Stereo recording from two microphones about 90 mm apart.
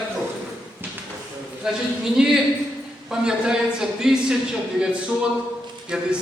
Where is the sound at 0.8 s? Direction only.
20° right (ahead or behind).